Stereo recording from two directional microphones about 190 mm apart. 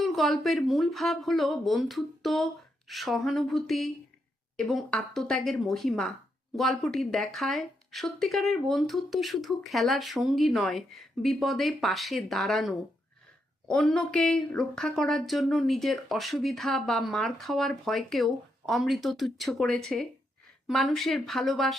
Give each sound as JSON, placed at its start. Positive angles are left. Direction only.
{"t": 0.0, "sound": "speech", "side_deg": 0}